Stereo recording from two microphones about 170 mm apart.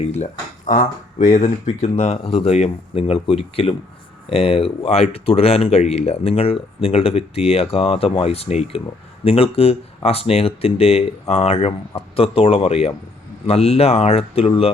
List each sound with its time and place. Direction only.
0.0 s speech: 40° left (ahead or behind)
1.3 s speech: 40° left (ahead or behind)